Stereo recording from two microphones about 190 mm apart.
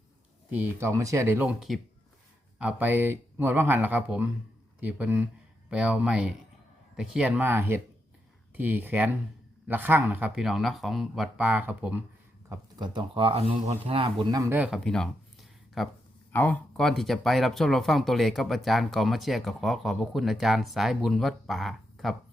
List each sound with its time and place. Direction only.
0.5 s speech: 10° right (ahead or behind)
12.5 s speech: 25° right (ahead or behind)
14.8 s a sound: centre (ahead or behind)
16.3 s speech: 10° left (ahead or behind)